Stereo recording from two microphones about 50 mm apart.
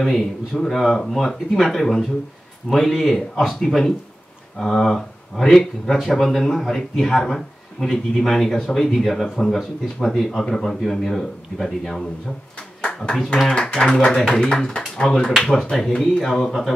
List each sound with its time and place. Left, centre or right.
0.0 s a man's voice: centre
14.5 s speech: centre
15.3 s a man's voice: centre